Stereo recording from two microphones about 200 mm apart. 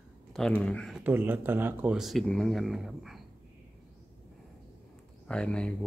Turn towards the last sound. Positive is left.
turn(degrees=5)  # may be behind; listen again after turning